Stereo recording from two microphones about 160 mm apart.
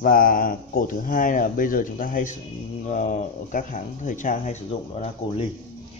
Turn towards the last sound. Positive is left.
turn(degrees=40)  # may be behind; listen again after turning